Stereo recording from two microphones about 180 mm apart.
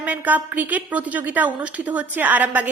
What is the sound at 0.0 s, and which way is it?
A woman's voice, 10° right (ahead or behind).